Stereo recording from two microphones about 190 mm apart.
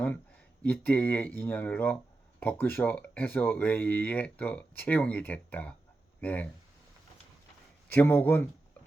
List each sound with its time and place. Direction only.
0.6 s speech: 10° left (ahead or behind)
7.9 s speech: 10° left (ahead or behind)